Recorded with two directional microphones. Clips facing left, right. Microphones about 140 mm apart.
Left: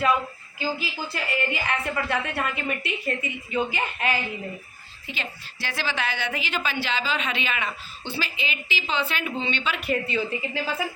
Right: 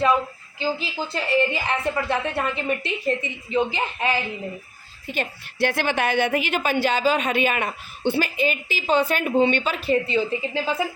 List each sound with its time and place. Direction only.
0.6 s a woman's voice: 25° right (ahead or behind)
5.0 s a woman's voice: 50° right (ahead or behind)
9.8 s a woman's voice: 30° right (ahead or behind)